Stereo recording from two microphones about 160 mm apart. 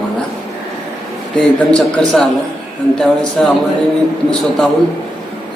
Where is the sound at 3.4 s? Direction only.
5° left (ahead or behind).